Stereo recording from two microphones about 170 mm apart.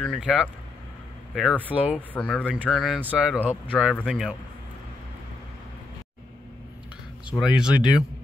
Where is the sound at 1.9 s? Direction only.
5° left (ahead or behind).